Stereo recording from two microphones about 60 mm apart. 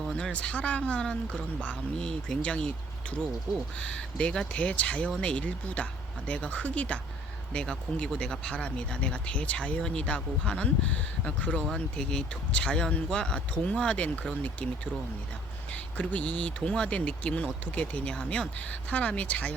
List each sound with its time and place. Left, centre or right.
0.2 s speech: centre
3.1 s speech: right
3.8 s speech: centre
15.7 s speech: left
16.6 s speech: centre
18.7 s speech: left